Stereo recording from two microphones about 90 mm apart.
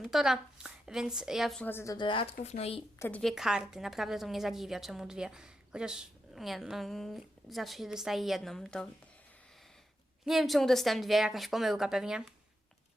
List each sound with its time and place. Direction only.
0.0 s a woman's voice: 5° right (ahead or behind)
1.7 s speech: 35° left (ahead or behind)
2.0 s speech: 70° left (ahead or behind); by 2.8 s 90° left
3.2 s a woman's voice: 5° right (ahead or behind)
10.2 s a woman's voice: centre (ahead or behind)